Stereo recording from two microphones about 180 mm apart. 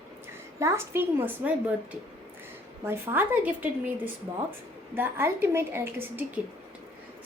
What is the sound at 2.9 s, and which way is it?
Speech, 10° right (ahead or behind).